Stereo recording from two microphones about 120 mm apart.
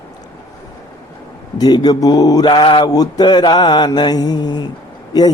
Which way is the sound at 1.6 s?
35° left (ahead or behind).